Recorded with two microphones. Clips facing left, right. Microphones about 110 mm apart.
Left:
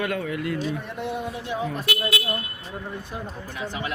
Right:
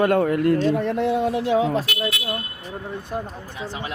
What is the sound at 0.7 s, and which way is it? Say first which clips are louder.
A man's voice: right 9 dB; 85° right.